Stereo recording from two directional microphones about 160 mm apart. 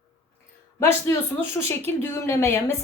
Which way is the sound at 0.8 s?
15° left (ahead or behind).